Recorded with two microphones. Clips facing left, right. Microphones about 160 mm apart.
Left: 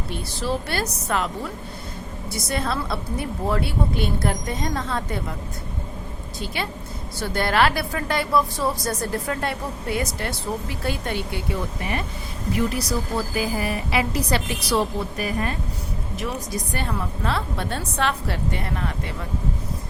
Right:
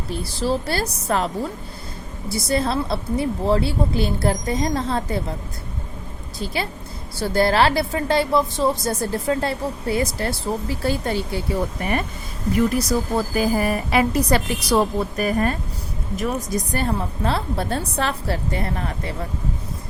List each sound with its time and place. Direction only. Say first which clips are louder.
0.1 s a woman's voice: right 4 dB; 35° right (ahead or behind)
2.3 s a woman's voice: right 5 dB; 30° right (ahead or behind)
6.4 s a woman's voice: right 3 dB; 35° right (ahead or behind)
11.8 s a woman's voice: right 4 dB; 50° right (ahead or behind)